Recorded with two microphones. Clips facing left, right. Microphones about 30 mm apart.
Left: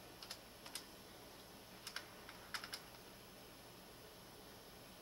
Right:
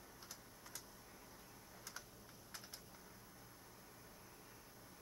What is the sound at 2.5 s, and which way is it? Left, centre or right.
Typing, left.